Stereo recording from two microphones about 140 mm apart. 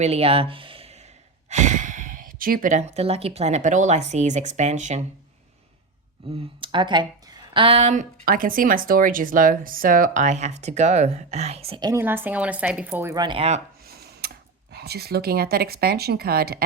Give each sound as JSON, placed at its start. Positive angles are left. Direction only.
{"t": 0.0, "sound": "speech", "side_deg": -45}
{"t": 1.5, "sound": "speech", "side_deg": -55}
{"t": 6.3, "sound": "speech", "side_deg": -35}
{"t": 8.2, "sound": "speech", "side_deg": -80}
{"t": 11.9, "sound": "speech", "side_deg": -15}
{"t": 13.1, "sound": "speech", "side_deg": -35}
{"t": 13.8, "sound": "a sound", "side_deg": -90}
{"t": 15.2, "sound": "speech", "side_deg": -90}